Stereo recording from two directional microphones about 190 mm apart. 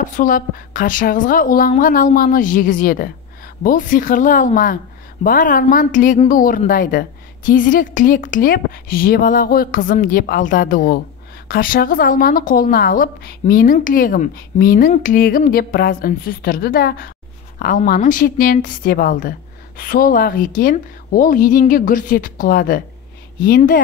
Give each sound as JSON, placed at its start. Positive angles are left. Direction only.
{"t": 0.0, "sound": "a woman's voice", "side_deg": 45}